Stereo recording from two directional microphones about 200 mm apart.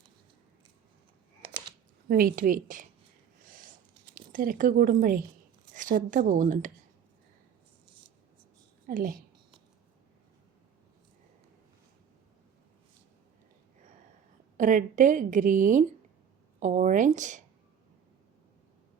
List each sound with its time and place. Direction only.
2.0 s a woman's voice: 45° right (ahead or behind)
4.1 s a woman's voice: 45° right (ahead or behind)
8.9 s a woman's voice: 45° right (ahead or behind)
14.5 s a woman's voice: 40° right (ahead or behind)